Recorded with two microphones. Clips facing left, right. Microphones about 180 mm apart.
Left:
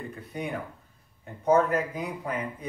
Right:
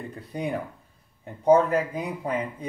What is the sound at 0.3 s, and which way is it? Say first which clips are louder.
Speech: right 5 dB; 35° right (ahead or behind).